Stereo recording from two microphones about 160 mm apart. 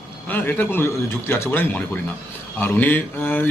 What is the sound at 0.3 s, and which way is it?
Speech, 10° left (ahead or behind).